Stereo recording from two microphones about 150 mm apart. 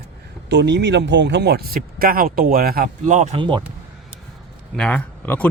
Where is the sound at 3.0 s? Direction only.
50° right (ahead or behind).